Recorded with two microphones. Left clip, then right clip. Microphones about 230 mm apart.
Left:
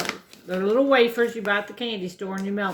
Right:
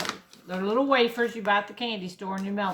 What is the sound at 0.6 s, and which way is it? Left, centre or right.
Speech, centre.